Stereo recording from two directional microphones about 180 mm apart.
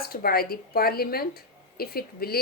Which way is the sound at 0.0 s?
55° left (ahead or behind).